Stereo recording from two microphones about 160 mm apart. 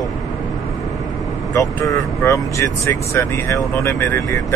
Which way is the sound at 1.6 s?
20° left (ahead or behind).